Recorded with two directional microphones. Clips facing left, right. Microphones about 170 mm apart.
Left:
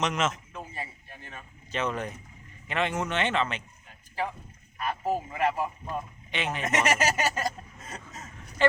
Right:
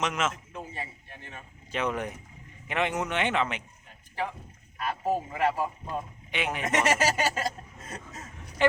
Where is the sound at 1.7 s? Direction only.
15° right (ahead or behind).